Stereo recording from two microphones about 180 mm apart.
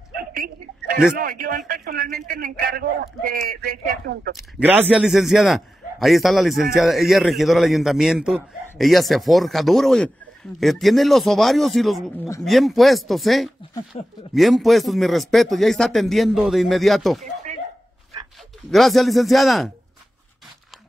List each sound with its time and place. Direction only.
0.3 s a sound: 55° right (ahead or behind)
1.1 s a man's voice: 50° right (ahead or behind)
4.4 s a man's voice: 10° right (ahead or behind)
13.9 s speech: 30° left (ahead or behind)
14.3 s a man's voice: centre (ahead or behind)
18.7 s a man's voice: centre (ahead or behind)